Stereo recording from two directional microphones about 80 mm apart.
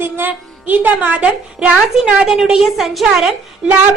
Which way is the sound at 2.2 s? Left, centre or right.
Centre.